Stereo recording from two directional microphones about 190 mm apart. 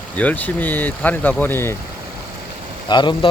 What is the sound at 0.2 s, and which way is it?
Speech, 10° left (ahead or behind).